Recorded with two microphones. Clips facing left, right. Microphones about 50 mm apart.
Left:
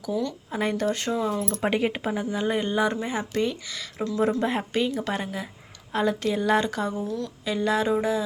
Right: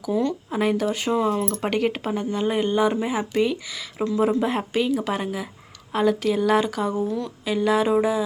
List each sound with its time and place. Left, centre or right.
0.1 s speech: right
0.5 s speech: centre
1.5 s a woman's voice: centre
6.9 s a woman's voice: right
7.4 s speech: centre